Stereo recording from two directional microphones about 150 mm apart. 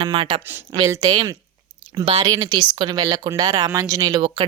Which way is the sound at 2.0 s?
40° right (ahead or behind).